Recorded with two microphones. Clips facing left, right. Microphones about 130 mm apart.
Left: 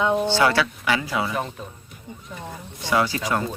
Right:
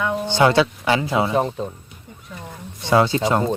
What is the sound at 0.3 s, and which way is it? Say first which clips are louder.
Speech: right 4 dB; 20° right (ahead or behind).